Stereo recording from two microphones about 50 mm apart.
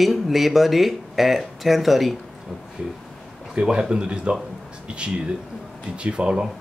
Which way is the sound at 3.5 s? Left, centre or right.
Centre.